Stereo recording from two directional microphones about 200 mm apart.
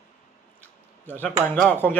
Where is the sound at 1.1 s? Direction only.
10° left (ahead or behind).